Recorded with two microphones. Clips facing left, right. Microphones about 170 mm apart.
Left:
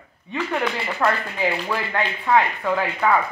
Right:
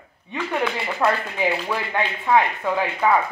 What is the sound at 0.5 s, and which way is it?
Speech, 10° right (ahead or behind).